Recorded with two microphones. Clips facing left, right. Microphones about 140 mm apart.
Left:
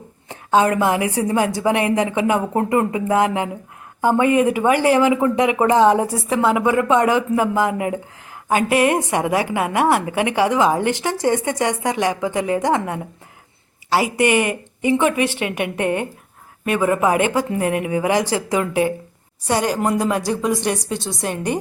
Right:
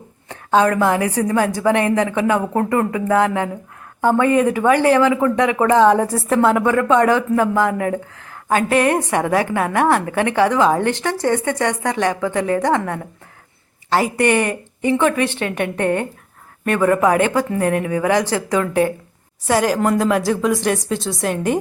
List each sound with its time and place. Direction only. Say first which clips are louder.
0.3 s a sound: right 1 dB; 15° left (ahead or behind)
1.0 s speech: right 1 dB; 20° left (ahead or behind)
19.5 s a woman's voice: right 3 dB; centre (ahead or behind)